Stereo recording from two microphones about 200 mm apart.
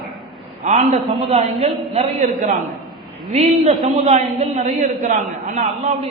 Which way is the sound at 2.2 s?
40° right (ahead or behind).